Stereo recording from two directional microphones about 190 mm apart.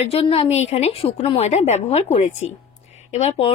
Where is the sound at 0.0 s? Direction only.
30° left (ahead or behind).